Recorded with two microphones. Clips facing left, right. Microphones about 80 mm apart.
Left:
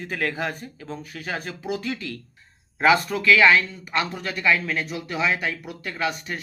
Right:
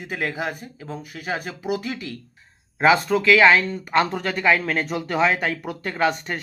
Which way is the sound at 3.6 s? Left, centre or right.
Right.